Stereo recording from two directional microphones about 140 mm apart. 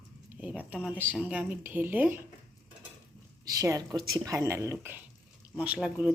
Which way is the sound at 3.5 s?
25° right (ahead or behind).